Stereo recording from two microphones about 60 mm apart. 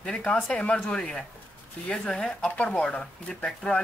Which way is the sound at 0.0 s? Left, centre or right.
Centre.